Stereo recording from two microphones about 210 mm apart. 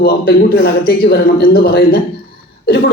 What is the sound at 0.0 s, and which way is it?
A man's voice, 45° left (ahead or behind).